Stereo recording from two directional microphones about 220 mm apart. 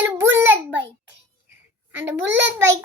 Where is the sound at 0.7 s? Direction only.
55° right (ahead or behind).